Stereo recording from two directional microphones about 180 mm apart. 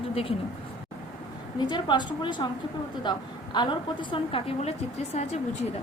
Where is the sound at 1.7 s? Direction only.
25° left (ahead or behind).